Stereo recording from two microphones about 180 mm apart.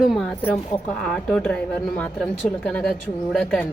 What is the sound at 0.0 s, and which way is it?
A woman's voice, centre (ahead or behind).